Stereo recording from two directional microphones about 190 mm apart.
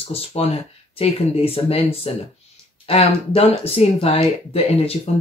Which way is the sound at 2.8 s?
35° left (ahead or behind).